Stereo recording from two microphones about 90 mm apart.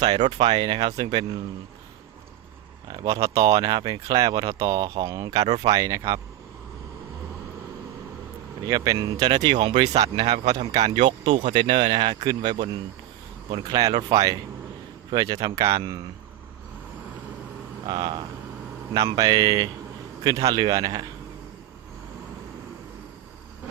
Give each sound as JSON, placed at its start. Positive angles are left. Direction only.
{"t": 0.0, "sound": "speech", "side_deg": -55}
{"t": 2.9, "sound": "speech", "side_deg": -50}
{"t": 3.2, "sound": "speech", "side_deg": -35}
{"t": 4.6, "sound": "speech", "side_deg": -40}
{"t": 8.6, "sound": "speech", "side_deg": -45}
{"t": 10.9, "sound": "speech", "side_deg": -90}
{"t": 17.8, "sound": "speech", "side_deg": -55}